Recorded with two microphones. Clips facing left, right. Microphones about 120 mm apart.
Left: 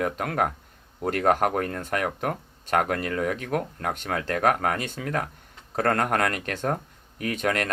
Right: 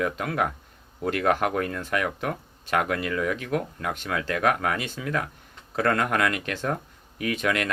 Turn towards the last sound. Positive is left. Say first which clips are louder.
# even
turn(degrees=45)  # may be behind; listen again after turning